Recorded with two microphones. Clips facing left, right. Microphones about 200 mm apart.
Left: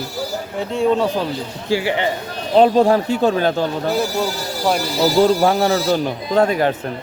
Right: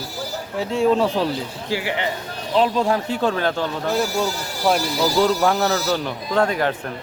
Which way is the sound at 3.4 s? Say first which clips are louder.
Left 4 dB; 35° left (ahead or behind).